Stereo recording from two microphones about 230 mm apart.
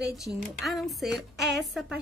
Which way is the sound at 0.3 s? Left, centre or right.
Centre.